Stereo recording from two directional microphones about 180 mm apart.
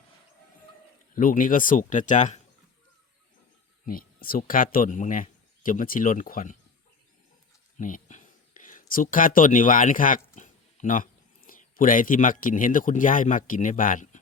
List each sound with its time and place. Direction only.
1.1 s speech: 50° left (ahead or behind)
3.8 s speech: 55° left (ahead or behind)
7.8 s speech: 45° left (ahead or behind)